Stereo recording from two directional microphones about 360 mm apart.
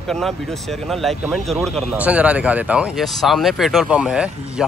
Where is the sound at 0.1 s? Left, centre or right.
Centre.